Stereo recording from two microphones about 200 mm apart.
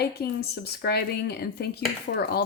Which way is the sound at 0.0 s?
50° left (ahead or behind).